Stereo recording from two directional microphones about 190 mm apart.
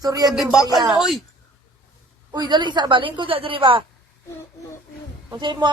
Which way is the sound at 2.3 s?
25° right (ahead or behind).